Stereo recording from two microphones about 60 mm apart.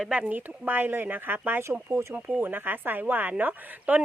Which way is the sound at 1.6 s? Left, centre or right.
Right.